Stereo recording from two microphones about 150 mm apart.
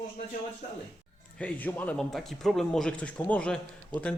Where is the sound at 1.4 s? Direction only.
10° left (ahead or behind).